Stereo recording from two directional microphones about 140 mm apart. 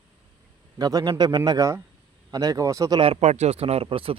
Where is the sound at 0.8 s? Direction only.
25° right (ahead or behind).